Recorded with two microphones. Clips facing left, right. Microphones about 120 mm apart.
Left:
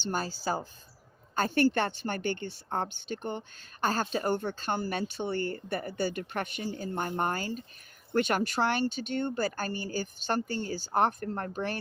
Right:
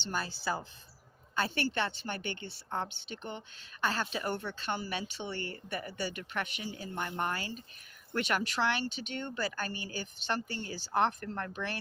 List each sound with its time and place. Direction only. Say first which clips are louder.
0.1 s a woman's voice: left 3 dB; 35° left (ahead or behind)